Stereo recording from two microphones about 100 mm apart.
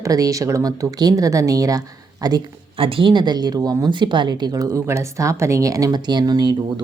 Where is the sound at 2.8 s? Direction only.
65° right (ahead or behind); by 6.8 s 45° right (ahead or behind).